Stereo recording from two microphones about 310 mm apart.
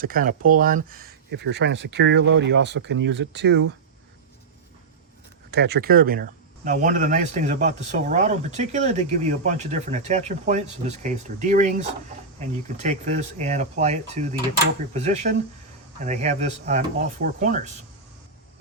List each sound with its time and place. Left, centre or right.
0.0 s speech: right
5.5 s speech: right